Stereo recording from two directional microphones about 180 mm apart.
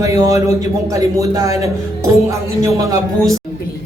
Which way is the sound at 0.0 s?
15° right (ahead or behind).